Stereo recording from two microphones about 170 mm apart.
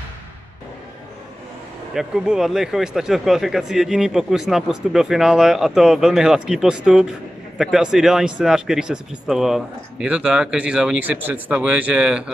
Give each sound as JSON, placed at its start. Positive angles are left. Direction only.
{"t": 2.0, "sound": "speech", "side_deg": -5}